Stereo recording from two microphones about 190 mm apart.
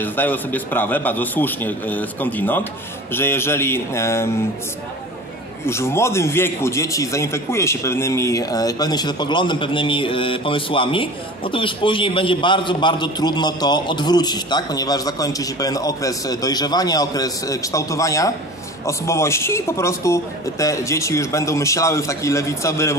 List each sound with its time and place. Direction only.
0.0 s speech: 10° left (ahead or behind)
5.7 s a man's voice: 15° left (ahead or behind)